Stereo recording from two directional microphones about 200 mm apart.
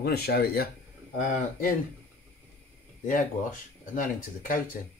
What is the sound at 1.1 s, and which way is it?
Speech, 40° left (ahead or behind).